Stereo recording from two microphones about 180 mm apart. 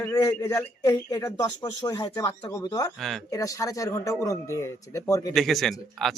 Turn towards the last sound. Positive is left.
turn(degrees=0)  # may be behind; listen again after turning